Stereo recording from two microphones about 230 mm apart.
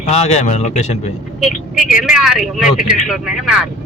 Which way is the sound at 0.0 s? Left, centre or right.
Left.